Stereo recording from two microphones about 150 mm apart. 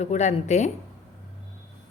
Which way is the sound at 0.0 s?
50° left (ahead or behind).